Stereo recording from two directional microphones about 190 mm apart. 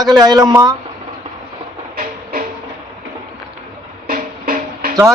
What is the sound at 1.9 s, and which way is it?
Music, 45° right (ahead or behind).